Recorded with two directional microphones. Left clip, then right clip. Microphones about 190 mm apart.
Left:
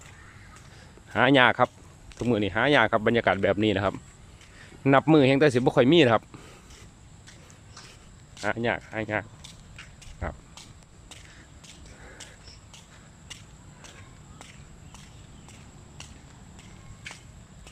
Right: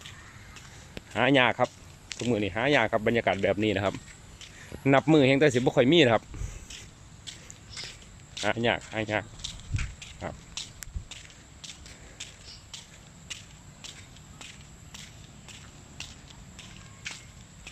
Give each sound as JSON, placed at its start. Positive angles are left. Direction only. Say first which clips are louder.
{"t": 1.1, "sound": "speech", "louder": "left 3 dB", "side_deg": 15}
{"t": 8.4, "sound": "speech", "louder": "right 1 dB", "side_deg": -5}
{"t": 9.4, "sound": "walk", "louder": "right 8 dB", "side_deg": 10}
{"t": 10.2, "sound": "a sound", "louder": "left 1 dB", "side_deg": 0}
{"t": 11.7, "sound": "a sound", "louder": "right 1 dB", "side_deg": 10}
{"t": 17.1, "sound": "walk", "louder": "right 3 dB", "side_deg": -10}